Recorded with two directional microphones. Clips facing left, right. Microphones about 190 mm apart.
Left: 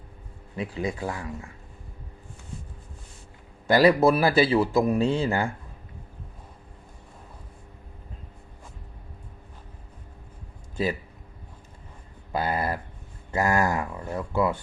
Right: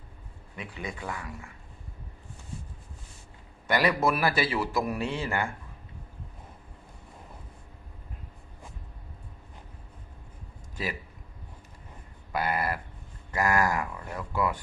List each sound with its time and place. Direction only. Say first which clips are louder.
0.5 s speech: left 8 dB; 30° left (ahead or behind)
3.7 s a man's voice: left 7 dB; 30° left (ahead or behind)
12.3 s a man's voice: left 2 dB; 25° left (ahead or behind)